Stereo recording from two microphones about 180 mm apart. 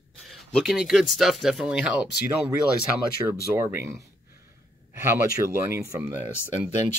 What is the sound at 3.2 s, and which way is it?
Speech, 20° right (ahead or behind).